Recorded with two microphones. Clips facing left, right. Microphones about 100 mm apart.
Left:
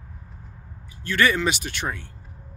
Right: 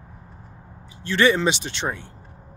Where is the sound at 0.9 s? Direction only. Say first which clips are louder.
Right 3 dB; 25° right (ahead or behind).